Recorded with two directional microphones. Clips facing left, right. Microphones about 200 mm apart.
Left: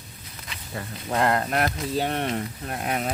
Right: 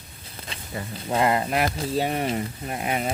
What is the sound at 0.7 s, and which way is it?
Speech, centre (ahead or behind).